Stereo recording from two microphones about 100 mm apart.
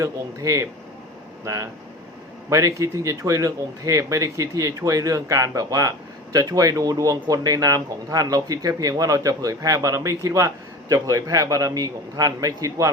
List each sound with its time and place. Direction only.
0.0 s speech: 35° right (ahead or behind)